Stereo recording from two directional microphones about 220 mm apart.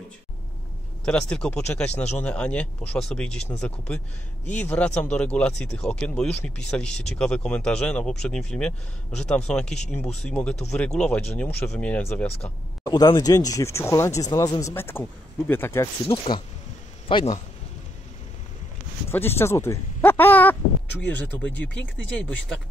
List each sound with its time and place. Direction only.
1.0 s speech: 5° left (ahead or behind)
10.5 s speech: 30° left (ahead or behind)
10.8 s speech: 5° left (ahead or behind)
12.9 s speech: 15° left (ahead or behind)
19.0 s speech: 10° left (ahead or behind)